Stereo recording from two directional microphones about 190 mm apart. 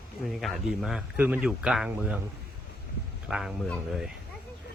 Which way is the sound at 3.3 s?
Centre (ahead or behind).